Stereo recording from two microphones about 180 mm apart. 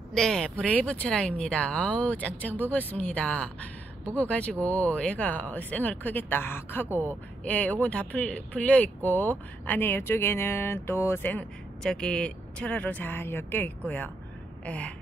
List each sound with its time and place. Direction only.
0.1 s speech: 5° left (ahead or behind)
6.9 s speech: 10° right (ahead or behind)
7.4 s speech: 10° left (ahead or behind)
14.6 s gasp: 5° left (ahead or behind)